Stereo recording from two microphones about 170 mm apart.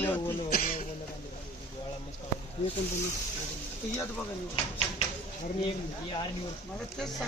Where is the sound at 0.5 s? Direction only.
60° left (ahead or behind).